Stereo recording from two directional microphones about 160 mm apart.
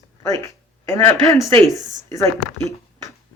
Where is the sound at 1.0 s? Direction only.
20° left (ahead or behind).